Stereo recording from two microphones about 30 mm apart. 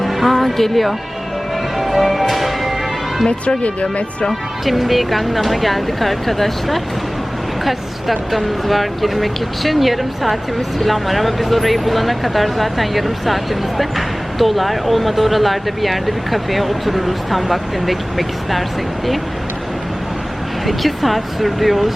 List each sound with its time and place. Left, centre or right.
0.0 s music: centre
0.3 s speech: centre
1.8 s music: centre
3.6 s speech: left
4.3 s speech: centre
20.7 s speech: centre